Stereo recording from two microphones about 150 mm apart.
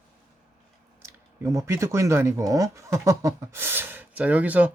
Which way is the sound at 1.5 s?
20° right (ahead or behind).